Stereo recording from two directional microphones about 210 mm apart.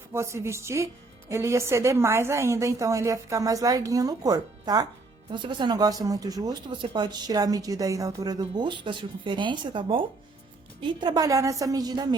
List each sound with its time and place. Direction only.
0.1 s a woman's voice: 15° right (ahead or behind)